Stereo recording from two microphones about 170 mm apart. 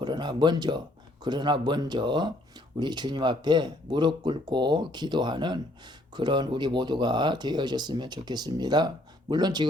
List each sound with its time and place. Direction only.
0.0 s speech: 25° right (ahead or behind)